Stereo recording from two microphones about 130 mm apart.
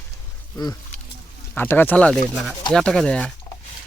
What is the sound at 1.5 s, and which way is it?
Speech, 15° left (ahead or behind).